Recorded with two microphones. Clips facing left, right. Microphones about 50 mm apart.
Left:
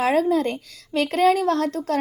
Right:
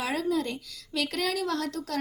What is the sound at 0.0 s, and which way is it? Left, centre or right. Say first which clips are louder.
A woman's voice: left 9 dB; left.